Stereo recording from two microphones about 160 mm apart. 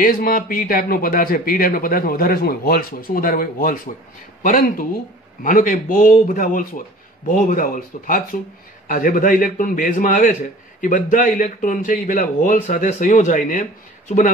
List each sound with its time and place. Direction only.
0.0 s a man's voice: 65° left (ahead or behind)